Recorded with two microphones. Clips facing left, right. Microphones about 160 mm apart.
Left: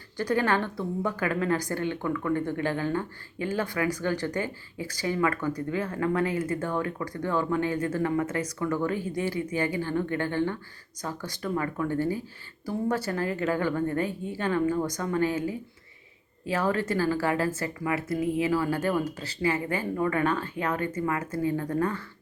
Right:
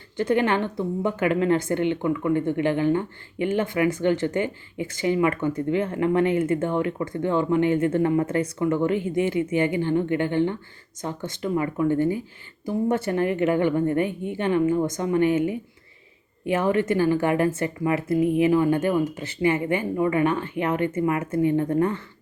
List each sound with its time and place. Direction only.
0.2 s a woman's voice: 20° right (ahead or behind)